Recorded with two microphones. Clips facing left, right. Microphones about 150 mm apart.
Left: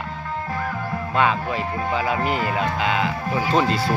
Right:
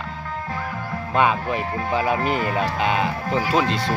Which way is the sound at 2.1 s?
20° left (ahead or behind).